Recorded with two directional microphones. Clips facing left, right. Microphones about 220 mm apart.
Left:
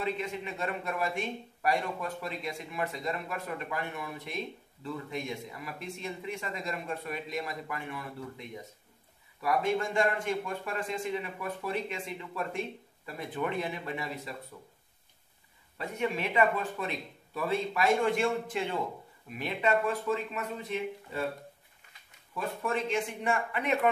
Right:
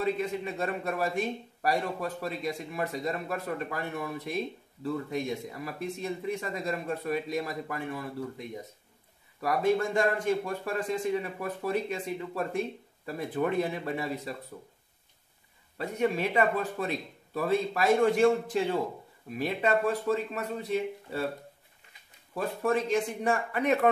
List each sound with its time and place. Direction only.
0.0 s a man's voice: 40° right (ahead or behind)
9.7 s a man's voice: 40° right (ahead or behind)
15.8 s a man's voice: 40° right (ahead or behind)
22.3 s a man's voice: 40° right (ahead or behind)